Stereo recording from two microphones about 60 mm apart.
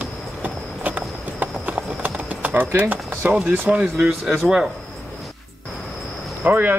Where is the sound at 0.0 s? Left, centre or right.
Right.